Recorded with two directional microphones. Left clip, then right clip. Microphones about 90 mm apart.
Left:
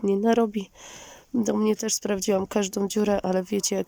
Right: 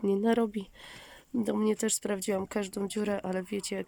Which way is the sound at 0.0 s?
15° left (ahead or behind).